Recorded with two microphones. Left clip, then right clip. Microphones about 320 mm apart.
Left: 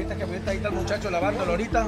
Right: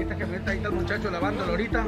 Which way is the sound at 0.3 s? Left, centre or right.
Centre.